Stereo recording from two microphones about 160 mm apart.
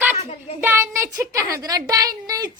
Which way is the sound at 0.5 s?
15° right (ahead or behind).